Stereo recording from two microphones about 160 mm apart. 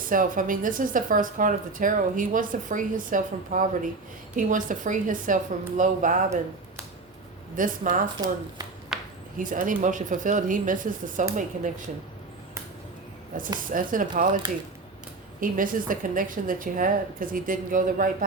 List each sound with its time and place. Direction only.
0.1 s speech: 60° right (ahead or behind)
7.5 s speech: 55° right (ahead or behind)
8.9 s a sound: 5° right (ahead or behind)
9.4 s speech: 55° right (ahead or behind)
13.3 s speech: 60° right (ahead or behind)
15.4 s speech: 60° right (ahead or behind)